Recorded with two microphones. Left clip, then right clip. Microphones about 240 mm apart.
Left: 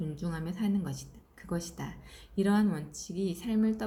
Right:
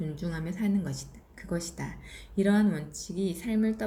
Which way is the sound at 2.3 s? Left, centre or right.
Centre.